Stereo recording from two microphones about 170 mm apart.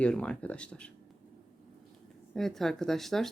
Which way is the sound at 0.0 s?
5° left (ahead or behind).